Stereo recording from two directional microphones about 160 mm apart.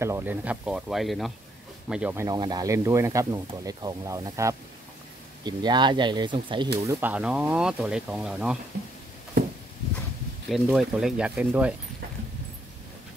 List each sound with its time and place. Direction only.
0.0 s speech: 15° right (ahead or behind)
2.2 s speech: 25° right (ahead or behind)
6.8 s speech: 15° right (ahead or behind)
10.5 s speech: centre (ahead or behind)